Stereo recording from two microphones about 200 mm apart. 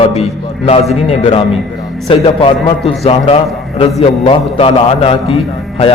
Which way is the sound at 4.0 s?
30° left (ahead or behind).